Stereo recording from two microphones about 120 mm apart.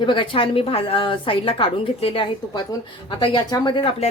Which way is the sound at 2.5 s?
35° left (ahead or behind).